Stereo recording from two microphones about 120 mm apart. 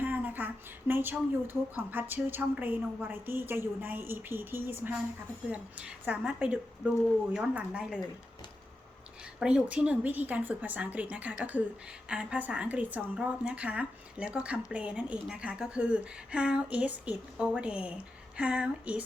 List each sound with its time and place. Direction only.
0.0 s a woman's voice: 15° right (ahead or behind)
9.4 s a woman's voice: 10° right (ahead or behind)